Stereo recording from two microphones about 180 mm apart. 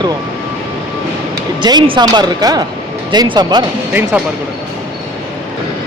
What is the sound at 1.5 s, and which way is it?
Speech, 25° right (ahead or behind).